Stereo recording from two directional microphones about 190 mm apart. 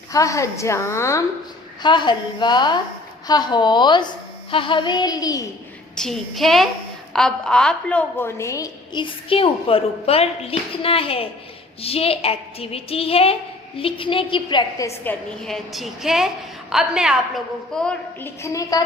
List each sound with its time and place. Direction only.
0.1 s a woman's voice: 15° left (ahead or behind)
6.0 s a woman's voice: centre (ahead or behind)
15.4 s a woman's voice: centre (ahead or behind)
18.4 s a woman's voice: 20° left (ahead or behind)